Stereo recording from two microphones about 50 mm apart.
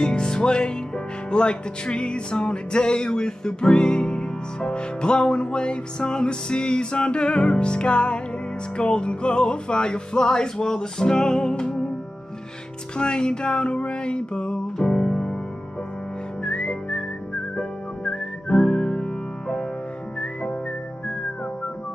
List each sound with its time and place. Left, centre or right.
0.0 s music: centre
12.9 s music: centre
16.4 s whistling: centre